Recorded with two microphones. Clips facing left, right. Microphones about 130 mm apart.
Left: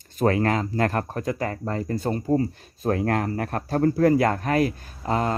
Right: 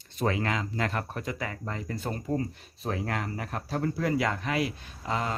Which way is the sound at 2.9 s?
55° left (ahead or behind).